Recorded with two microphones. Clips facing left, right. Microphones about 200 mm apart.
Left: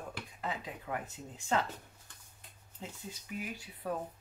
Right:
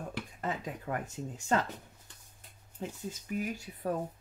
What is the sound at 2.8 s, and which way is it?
Speech, 45° right (ahead or behind).